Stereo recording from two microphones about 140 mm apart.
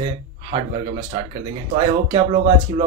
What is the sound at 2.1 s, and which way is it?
Speech, 40° right (ahead or behind).